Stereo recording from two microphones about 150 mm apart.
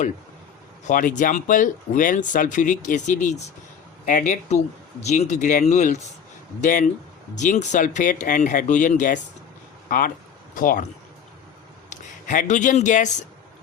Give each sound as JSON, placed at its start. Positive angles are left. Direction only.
{"t": 0.9, "sound": "speech", "side_deg": 60}
{"t": 6.6, "sound": "speech", "side_deg": 60}
{"t": 11.9, "sound": "speech", "side_deg": 60}